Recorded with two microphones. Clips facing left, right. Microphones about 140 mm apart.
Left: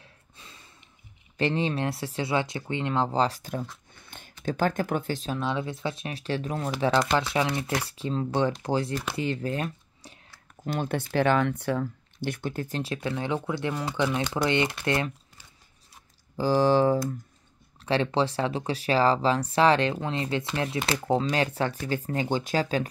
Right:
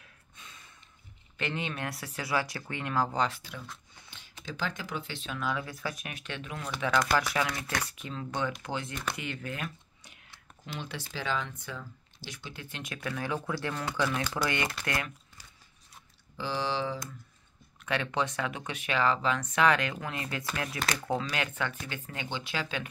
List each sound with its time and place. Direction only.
0.0 s a sound: 30° left (ahead or behind)
1.3 s speech: 35° left (ahead or behind)
10.6 s speech: 50° left (ahead or behind); by 15.1 s 25° left (ahead or behind)
16.3 s speech: 45° left (ahead or behind)
17.7 s speech: 30° left (ahead or behind)